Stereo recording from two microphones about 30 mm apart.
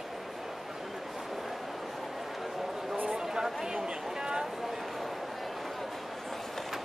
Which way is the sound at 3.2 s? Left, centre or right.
Right.